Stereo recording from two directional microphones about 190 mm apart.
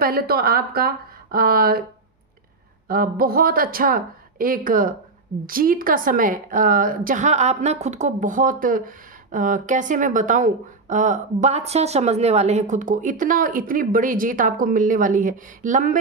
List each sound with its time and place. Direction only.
0.0 s a woman's voice: 55° right (ahead or behind)
2.9 s a woman's voice: 50° right (ahead or behind)